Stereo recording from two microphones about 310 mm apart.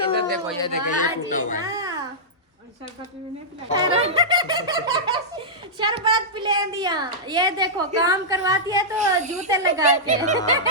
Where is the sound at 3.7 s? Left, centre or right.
Centre.